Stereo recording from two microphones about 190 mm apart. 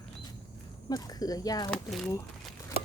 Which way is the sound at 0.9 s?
20° left (ahead or behind).